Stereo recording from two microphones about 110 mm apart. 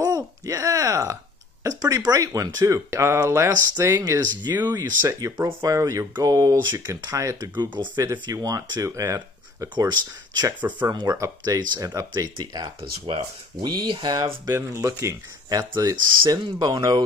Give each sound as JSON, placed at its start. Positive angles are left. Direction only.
{"t": 0.0, "sound": "a sound", "side_deg": -30}
{"t": 1.6, "sound": "speech", "side_deg": -30}
{"t": 7.5, "sound": "speech", "side_deg": -45}
{"t": 12.4, "sound": "speech", "side_deg": -45}
{"t": 14.4, "sound": "speech", "side_deg": -30}
{"t": 15.7, "sound": "speech", "side_deg": -40}